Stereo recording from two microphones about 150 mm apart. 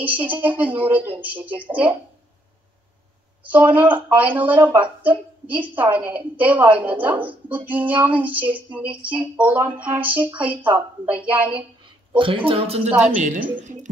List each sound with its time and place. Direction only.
0.0 s a woman's voice: 10° right (ahead or behind)
3.4 s a woman's voice: 10° right (ahead or behind)
12.2 s speech: 35° right (ahead or behind); by 13.4 s 55° right (ahead or behind)